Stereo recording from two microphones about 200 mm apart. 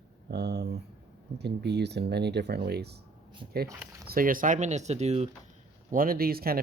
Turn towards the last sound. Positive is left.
turn(degrees=-50)  # may be behind; listen again after turning